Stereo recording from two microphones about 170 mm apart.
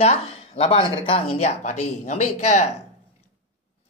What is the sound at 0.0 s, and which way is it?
Speech, 35° left (ahead or behind).